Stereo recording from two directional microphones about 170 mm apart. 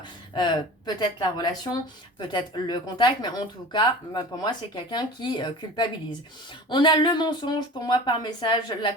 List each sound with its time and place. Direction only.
0.9 s speech: 25° left (ahead or behind)